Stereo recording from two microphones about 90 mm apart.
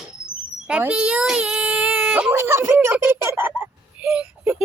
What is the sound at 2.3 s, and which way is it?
Speech, 30° right (ahead or behind).